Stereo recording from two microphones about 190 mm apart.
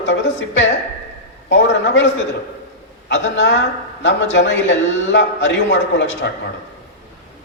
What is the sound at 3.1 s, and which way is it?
A man's voice, 70° left (ahead or behind).